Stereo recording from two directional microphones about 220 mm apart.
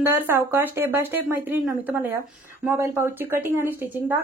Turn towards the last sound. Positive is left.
turn(degrees=-10)  # may be behind; listen again after turning